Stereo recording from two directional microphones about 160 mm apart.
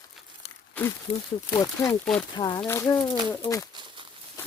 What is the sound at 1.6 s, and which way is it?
Speech, 15° left (ahead or behind).